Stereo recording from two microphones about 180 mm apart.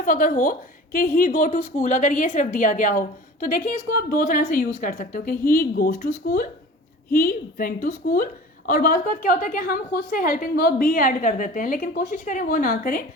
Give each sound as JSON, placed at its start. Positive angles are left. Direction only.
{"t": 0.0, "sound": "a woman's voice", "side_deg": 50}